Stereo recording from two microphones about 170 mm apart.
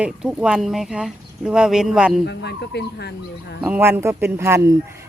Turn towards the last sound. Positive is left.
turn(degrees=-15)  # may be behind; listen again after turning